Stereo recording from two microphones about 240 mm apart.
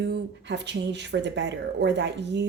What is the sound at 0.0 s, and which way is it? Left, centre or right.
Speech, right.